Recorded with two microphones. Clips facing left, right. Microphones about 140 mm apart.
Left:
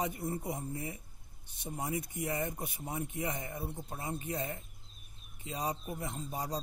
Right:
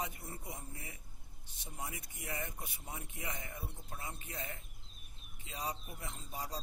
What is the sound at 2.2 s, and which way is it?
Speech, 20° left (ahead or behind).